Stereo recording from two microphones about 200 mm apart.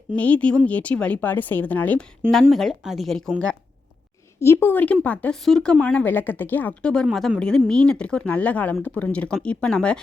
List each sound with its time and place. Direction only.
0.2 s a woman's voice: 5° left (ahead or behind)